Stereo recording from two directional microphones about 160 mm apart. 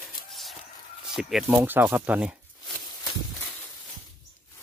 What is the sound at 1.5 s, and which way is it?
Speech, 10° right (ahead or behind).